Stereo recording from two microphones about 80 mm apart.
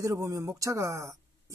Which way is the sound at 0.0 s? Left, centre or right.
Right.